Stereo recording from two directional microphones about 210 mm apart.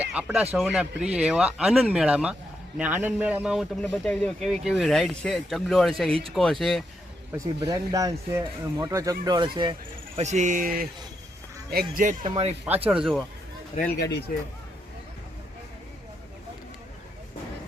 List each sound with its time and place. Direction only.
0.0 s speech: 5° right (ahead or behind)
6.1 s speech: 25° right (ahead or behind)
6.3 s speech: centre (ahead or behind)
7.3 s speech: 15° right (ahead or behind)
10.2 s speech: 35° right (ahead or behind)
12.2 s speech: 25° right (ahead or behind)
12.9 s speech: centre (ahead or behind)
14.0 s speech: 50° left (ahead or behind)